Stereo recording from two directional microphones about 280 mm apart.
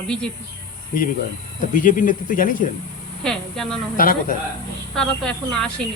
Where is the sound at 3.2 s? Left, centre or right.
Centre.